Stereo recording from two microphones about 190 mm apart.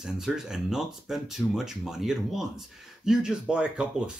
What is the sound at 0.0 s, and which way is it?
Speech, 5° right (ahead or behind).